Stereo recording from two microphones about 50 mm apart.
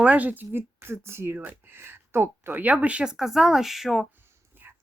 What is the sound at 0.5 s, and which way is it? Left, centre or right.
Speech, right.